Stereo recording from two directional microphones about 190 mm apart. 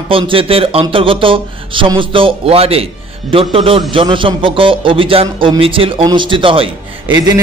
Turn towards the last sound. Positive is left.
turn(degrees=-25)  # may be behind; listen again after turning